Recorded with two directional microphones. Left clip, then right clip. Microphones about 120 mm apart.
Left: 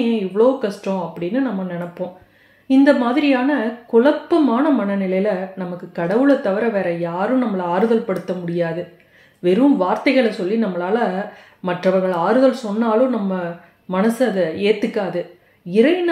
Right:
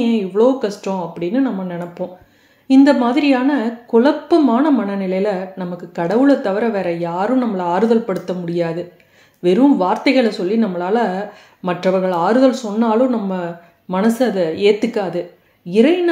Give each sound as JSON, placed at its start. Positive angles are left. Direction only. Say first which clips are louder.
{"t": 0.0, "sound": "a woman's voice", "louder": "right 1 dB", "side_deg": -35}